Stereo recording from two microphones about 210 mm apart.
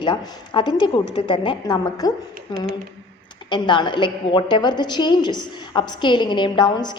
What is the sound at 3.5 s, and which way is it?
A woman's voice, 20° left (ahead or behind).